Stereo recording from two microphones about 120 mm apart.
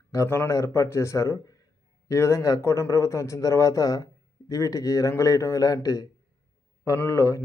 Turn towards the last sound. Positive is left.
turn(degrees=25)  # may be behind; listen again after turning